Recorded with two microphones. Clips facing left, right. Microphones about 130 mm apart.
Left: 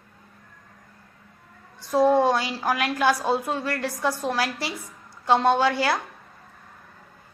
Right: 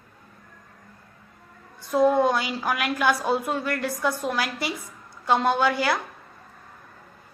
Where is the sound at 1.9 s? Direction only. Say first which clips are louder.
Left 1 dB; 30° left (ahead or behind).